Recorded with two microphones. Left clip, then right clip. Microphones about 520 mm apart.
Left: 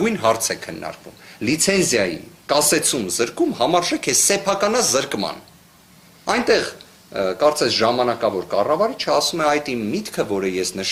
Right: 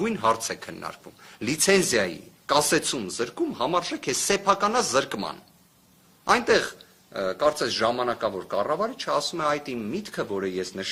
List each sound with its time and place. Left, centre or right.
0.0 s speech: right